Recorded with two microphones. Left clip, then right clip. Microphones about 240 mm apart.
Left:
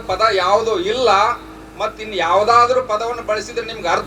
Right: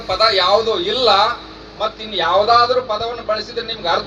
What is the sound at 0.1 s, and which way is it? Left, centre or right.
A man's voice, left.